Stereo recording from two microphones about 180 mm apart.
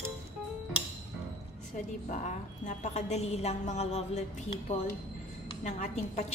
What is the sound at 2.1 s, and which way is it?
A woman's voice, 40° left (ahead or behind).